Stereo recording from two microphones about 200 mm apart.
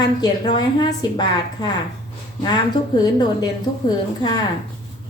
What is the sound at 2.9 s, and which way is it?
A woman's voice, 20° left (ahead or behind).